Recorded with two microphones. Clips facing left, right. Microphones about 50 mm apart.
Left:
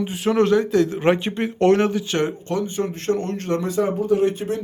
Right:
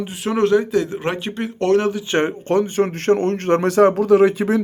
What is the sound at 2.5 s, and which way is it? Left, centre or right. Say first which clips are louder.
Speech: right 6 dB; right.